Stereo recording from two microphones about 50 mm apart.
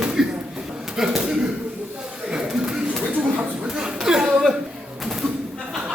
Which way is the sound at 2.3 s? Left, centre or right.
Centre.